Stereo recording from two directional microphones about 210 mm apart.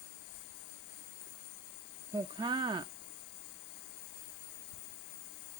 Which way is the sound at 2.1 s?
20° right (ahead or behind).